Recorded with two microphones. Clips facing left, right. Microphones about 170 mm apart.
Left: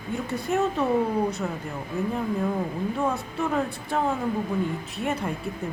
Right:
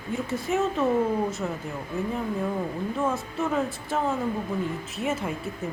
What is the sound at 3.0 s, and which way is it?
Speech, centre (ahead or behind).